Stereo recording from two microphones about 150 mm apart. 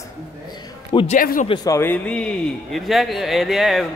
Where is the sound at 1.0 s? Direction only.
65° left (ahead or behind).